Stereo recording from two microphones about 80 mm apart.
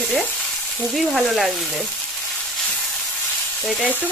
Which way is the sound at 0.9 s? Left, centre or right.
Centre.